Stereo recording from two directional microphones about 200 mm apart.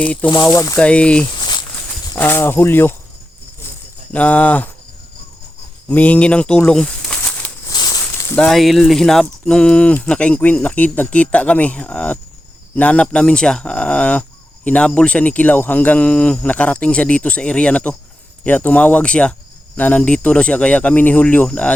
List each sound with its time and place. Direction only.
0.0 s speech: 5° left (ahead or behind)
0.3 s speech: 20° left (ahead or behind)
1.4 s a sound: 20° left (ahead or behind)
2.1 s speech: 10° left (ahead or behind)
4.1 s speech: 5° left (ahead or behind)
5.9 s speech: 10° left (ahead or behind)
7.7 s a sound: 20° left (ahead or behind)
8.4 s speech: centre (ahead or behind)